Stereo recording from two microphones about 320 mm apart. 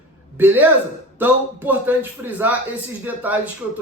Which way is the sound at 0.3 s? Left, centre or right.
Centre.